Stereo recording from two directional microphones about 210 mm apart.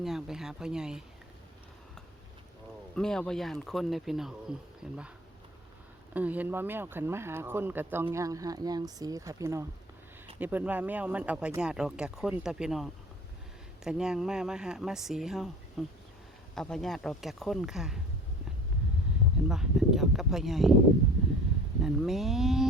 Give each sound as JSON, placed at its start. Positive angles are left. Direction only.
{"t": 0.0, "sound": "speech", "side_deg": 0}
{"t": 2.9, "sound": "speech", "side_deg": 5}
{"t": 6.1, "sound": "speech", "side_deg": -10}
{"t": 19.5, "sound": "speech", "side_deg": 0}
{"t": 21.8, "sound": "speech", "side_deg": 0}